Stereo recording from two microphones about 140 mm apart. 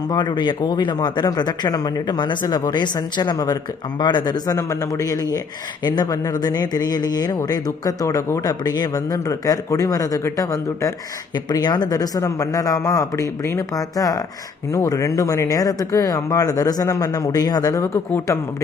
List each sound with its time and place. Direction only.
0.1 s speech: 30° left (ahead or behind)